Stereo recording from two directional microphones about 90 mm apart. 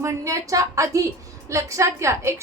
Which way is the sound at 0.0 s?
35° right (ahead or behind).